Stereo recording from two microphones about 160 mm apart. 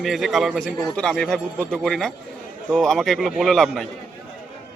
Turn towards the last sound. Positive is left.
turn(degrees=0)  # may be behind; listen again after turning